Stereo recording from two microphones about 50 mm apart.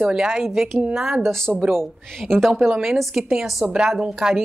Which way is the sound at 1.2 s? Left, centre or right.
Centre.